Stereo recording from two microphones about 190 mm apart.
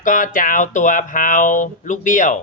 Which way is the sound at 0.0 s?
45° left (ahead or behind).